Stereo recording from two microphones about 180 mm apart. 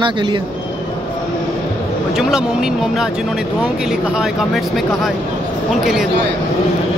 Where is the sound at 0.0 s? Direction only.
25° right (ahead or behind).